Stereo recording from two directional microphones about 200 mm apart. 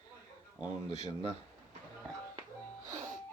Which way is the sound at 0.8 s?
30° left (ahead or behind).